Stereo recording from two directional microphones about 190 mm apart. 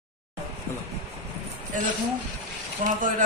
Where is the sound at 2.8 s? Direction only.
35° right (ahead or behind).